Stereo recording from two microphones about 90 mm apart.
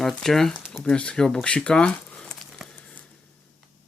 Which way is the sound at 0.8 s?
10° left (ahead or behind).